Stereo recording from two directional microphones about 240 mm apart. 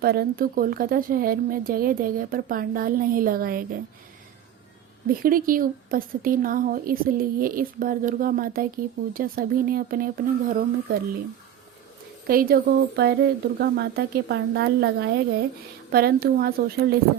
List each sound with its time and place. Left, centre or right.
0.0 s speech: right
5.2 s speech: right
12.3 s a woman's voice: right